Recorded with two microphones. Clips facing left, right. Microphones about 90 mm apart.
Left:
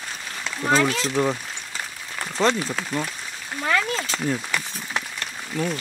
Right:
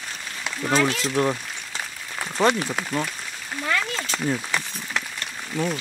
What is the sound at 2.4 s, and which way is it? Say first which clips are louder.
Speech: right 1 dB; 15° right (ahead or behind).